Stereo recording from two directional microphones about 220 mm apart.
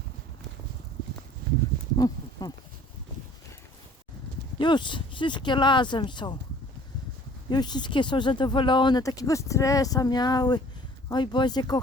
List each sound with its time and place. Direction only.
2.0 s a sound: 15° left (ahead or behind)
4.5 s speech: 20° left (ahead or behind)
7.5 s speech: 20° left (ahead or behind)